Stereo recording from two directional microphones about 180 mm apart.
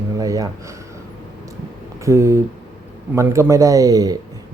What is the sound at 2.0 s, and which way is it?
A man's voice, 15° right (ahead or behind).